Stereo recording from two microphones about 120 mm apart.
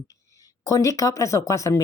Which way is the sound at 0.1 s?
30° left (ahead or behind).